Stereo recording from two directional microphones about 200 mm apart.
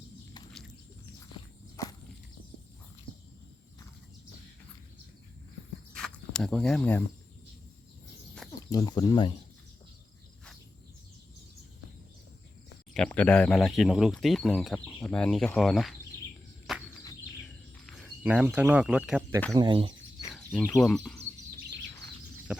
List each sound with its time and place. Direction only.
1.7 s walk: 15° left (ahead or behind)
5.9 s a sound: 5° left (ahead or behind)
8.4 s speech: 20° left (ahead or behind)
12.9 s speech: 5° left (ahead or behind)
16.7 s a sound: centre (ahead or behind)
17.8 s speech: centre (ahead or behind)
19.5 s speech: 25° right (ahead or behind)
20.3 s speech: 5° left (ahead or behind)